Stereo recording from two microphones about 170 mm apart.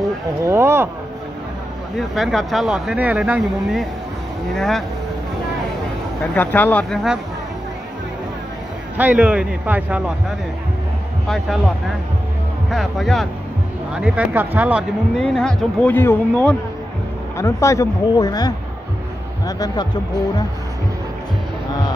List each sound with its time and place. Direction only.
0.5 s a man's voice: 15° right (ahead or behind)
2.0 s speech: centre (ahead or behind)
6.3 s speech: 10° left (ahead or behind)
8.9 s a man's voice: 10° right (ahead or behind)
11.2 s speech: 5° left (ahead or behind)
12.7 s a man's voice: centre (ahead or behind)
15.1 s speech: 5° left (ahead or behind); by 19.9 s 25° left (ahead or behind)